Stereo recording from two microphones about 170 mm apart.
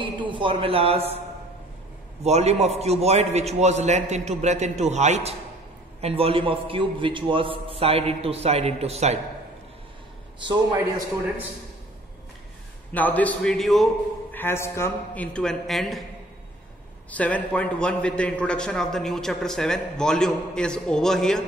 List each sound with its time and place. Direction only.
0.0 s a woman's voice: 30° right (ahead or behind)
2.2 s a man's voice: 40° right (ahead or behind)
12.9 s a man's voice: 10° left (ahead or behind)
14.3 s a man's voice: 15° left (ahead or behind)
17.1 s a man's voice: 10° left (ahead or behind)